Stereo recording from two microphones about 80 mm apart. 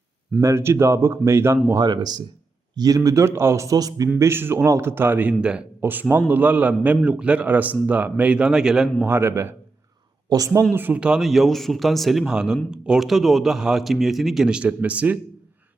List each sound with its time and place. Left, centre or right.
0.4 s a man's voice: right
1.7 s speech: right
2.7 s a man's voice: right
3.2 s a man's voice: right
4.2 s a man's voice: right
5.4 s a man's voice: centre
5.8 s a man's voice: right; by 8.9 s centre
9.0 s a man's voice: right
10.2 s a man's voice: right
10.7 s a man's voice: right
11.0 s speech: centre